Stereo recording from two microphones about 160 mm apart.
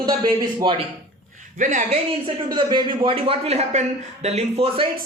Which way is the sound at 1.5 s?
50° right (ahead or behind).